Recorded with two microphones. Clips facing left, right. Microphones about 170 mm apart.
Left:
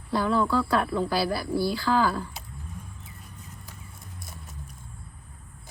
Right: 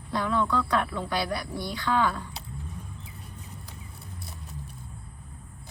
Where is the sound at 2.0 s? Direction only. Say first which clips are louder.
Even; 40° left (ahead or behind).